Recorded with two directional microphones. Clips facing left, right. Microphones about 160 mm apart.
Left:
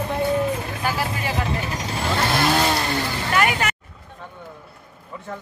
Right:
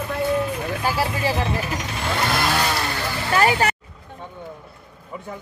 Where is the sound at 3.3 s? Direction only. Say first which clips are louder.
Right 3 dB; 30° right (ahead or behind).